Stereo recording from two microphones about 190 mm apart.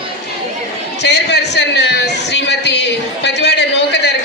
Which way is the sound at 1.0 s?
65° left (ahead or behind).